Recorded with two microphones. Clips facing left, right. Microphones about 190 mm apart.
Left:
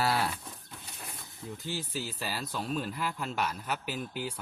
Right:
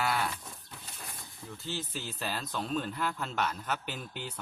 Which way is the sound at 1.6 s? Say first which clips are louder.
Left 1 dB; 10° left (ahead or behind).